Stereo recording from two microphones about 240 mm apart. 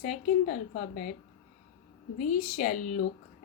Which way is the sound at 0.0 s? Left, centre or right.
Left.